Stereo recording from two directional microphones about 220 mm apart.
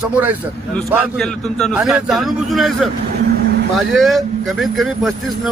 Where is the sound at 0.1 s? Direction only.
10° right (ahead or behind).